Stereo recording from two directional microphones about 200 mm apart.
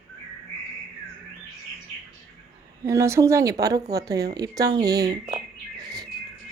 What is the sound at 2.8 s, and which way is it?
Speech, 15° right (ahead or behind).